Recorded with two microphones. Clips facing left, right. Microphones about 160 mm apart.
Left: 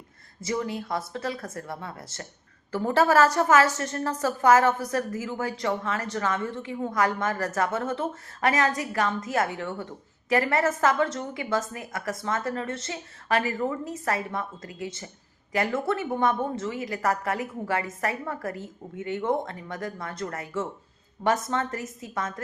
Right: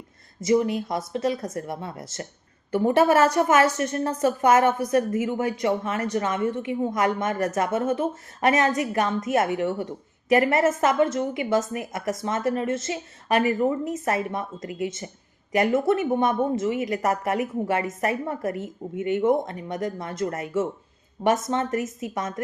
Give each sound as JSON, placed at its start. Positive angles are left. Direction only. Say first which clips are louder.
{"t": 0.4, "sound": "a woman's voice", "louder": "right 8 dB", "side_deg": -20}